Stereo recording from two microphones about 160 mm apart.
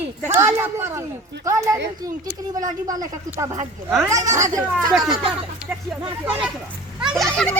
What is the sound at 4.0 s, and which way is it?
Speech, 20° right (ahead or behind).